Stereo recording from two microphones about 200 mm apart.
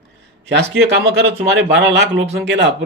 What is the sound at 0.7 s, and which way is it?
Speech, 55° right (ahead or behind).